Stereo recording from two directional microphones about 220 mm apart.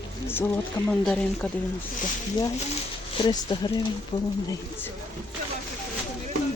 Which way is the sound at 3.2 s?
20° left (ahead or behind).